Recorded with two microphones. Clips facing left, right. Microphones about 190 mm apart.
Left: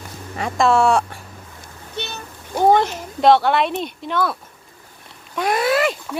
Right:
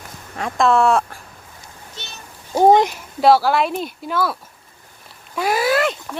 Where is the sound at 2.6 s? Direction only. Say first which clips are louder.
Right 3 dB; 20° right (ahead or behind).